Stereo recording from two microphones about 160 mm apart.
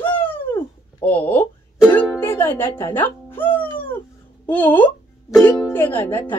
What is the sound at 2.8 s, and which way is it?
Speech, 15° left (ahead or behind).